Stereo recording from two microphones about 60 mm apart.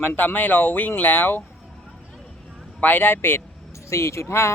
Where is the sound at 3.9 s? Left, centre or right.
Left.